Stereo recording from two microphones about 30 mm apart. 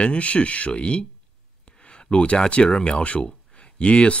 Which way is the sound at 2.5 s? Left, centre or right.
Left.